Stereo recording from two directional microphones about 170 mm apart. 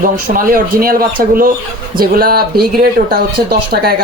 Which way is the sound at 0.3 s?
55° right (ahead or behind).